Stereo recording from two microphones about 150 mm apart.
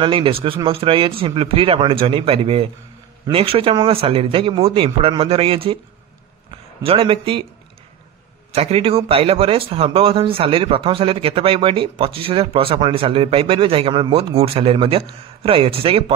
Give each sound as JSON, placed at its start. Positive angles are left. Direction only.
{"t": 0.0, "sound": "speech", "side_deg": -35}
{"t": 6.8, "sound": "speech", "side_deg": -40}
{"t": 8.5, "sound": "speech", "side_deg": -40}